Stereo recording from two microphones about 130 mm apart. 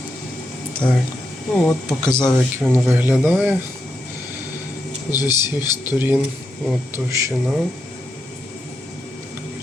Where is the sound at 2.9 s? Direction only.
15° right (ahead or behind).